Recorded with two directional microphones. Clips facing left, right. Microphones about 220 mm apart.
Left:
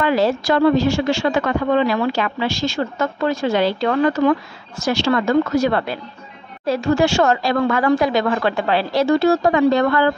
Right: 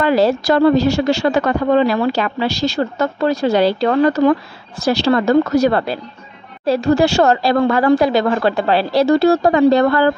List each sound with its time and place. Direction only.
0.0 s speech: 35° right (ahead or behind)